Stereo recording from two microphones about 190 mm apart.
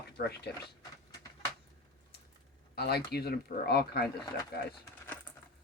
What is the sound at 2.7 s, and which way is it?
Speech, 55° left (ahead or behind).